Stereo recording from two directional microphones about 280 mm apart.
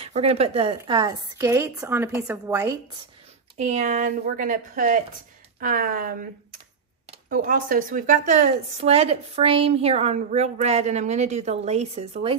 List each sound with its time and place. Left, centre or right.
0.0 s a woman's voice: right
3.5 s speech: right